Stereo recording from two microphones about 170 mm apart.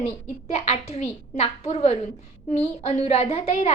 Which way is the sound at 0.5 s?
40° left (ahead or behind).